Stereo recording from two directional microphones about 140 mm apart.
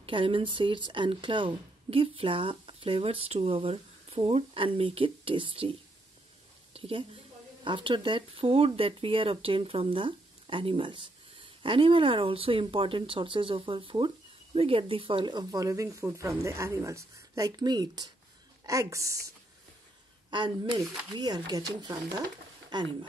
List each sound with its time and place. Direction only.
0.0 s speech: 40° right (ahead or behind)
6.7 s a woman's voice: 40° right (ahead or behind); by 19.1 s 20° right (ahead or behind)
20.2 s speech: 35° right (ahead or behind)